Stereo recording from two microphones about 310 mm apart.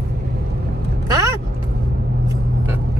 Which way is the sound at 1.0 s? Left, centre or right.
Centre.